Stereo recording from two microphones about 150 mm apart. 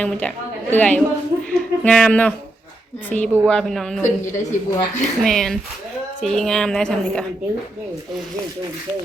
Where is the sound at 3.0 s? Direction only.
10° left (ahead or behind).